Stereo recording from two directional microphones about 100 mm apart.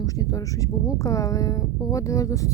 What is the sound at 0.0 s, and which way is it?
A woman's voice, 35° left (ahead or behind).